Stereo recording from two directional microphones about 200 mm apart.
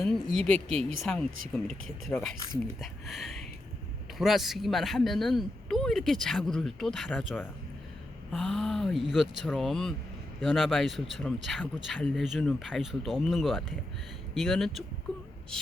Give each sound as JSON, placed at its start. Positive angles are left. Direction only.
{"t": 0.0, "sound": "speech", "side_deg": 5}